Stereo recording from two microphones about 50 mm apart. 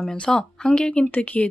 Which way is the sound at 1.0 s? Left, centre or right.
Left.